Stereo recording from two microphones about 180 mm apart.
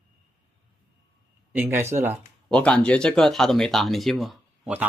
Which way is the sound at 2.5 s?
5° left (ahead or behind).